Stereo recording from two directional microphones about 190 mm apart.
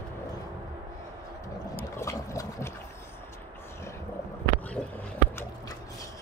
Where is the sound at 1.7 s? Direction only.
15° left (ahead or behind).